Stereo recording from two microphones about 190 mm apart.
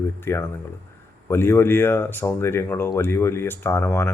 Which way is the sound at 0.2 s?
10° left (ahead or behind).